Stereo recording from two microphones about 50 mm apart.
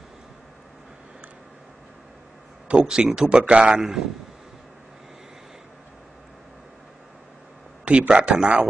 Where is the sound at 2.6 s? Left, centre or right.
Centre.